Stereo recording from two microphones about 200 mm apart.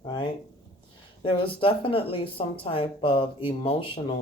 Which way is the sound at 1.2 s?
25° left (ahead or behind).